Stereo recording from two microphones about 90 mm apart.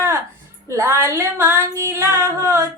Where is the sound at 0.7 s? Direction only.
25° right (ahead or behind).